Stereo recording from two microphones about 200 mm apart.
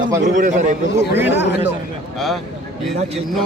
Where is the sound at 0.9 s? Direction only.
10° right (ahead or behind).